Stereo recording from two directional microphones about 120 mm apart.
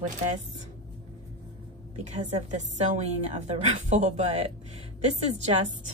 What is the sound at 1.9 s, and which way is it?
A woman's voice, 65° right (ahead or behind).